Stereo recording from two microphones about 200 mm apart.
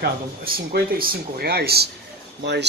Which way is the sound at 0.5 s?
45° right (ahead or behind).